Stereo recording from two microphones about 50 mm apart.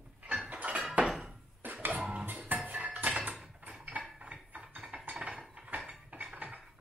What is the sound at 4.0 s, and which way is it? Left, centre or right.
Mechanisms, right.